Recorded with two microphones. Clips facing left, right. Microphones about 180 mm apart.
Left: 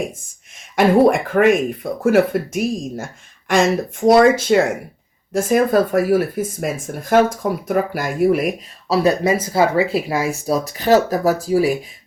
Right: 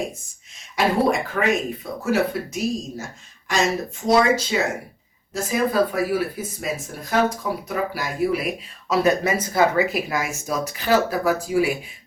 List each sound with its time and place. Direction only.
0.8 s speech: 55° left (ahead or behind)
8.9 s speech: 30° left (ahead or behind)